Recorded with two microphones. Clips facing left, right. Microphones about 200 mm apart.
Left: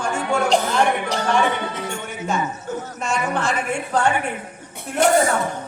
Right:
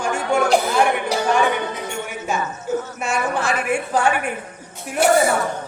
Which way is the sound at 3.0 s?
10° right (ahead or behind).